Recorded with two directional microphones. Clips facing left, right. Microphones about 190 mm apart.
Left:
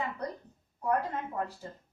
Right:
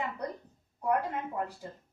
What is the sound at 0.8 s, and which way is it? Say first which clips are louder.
Speech: even; 15° right (ahead or behind).